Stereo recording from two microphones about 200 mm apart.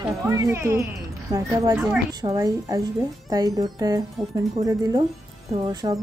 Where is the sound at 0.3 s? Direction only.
15° right (ahead or behind).